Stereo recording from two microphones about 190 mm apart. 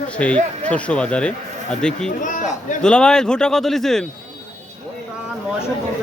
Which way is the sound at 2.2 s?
40° left (ahead or behind).